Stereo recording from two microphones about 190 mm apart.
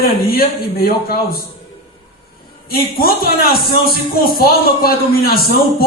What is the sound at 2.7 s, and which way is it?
A man's voice, 50° left (ahead or behind).